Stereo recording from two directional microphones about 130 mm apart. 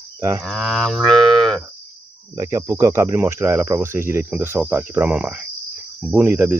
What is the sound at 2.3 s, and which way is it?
Speech, 25° right (ahead or behind).